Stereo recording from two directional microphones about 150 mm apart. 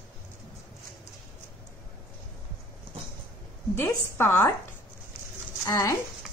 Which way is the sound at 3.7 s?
15° left (ahead or behind).